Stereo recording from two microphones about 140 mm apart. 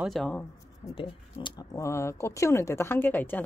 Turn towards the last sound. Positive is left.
turn(degrees=15)  # may be behind; listen again after turning